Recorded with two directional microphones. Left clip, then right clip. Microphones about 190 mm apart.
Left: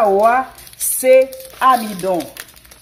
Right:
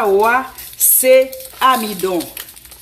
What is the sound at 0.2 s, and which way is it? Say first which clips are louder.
Speech: left 1 dB; 35° left (ahead or behind).